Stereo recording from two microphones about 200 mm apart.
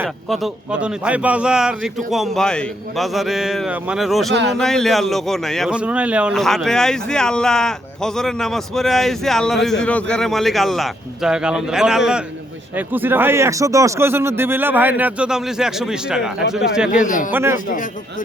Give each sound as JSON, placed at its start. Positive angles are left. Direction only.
{"t": 0.3, "sound": "a man's voice", "side_deg": -5}
{"t": 16.9, "sound": "a man's voice", "side_deg": 40}
{"t": 17.3, "sound": "speech", "side_deg": -10}